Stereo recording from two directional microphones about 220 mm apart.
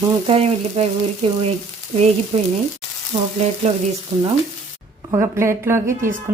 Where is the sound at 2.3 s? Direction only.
25° right (ahead or behind).